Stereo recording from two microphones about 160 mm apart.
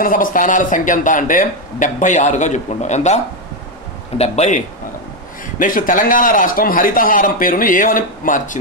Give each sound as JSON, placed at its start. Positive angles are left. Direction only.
{"t": 0.0, "sound": "speech", "side_deg": 60}
{"t": 4.2, "sound": "speech", "side_deg": 40}
{"t": 5.6, "sound": "speech", "side_deg": 60}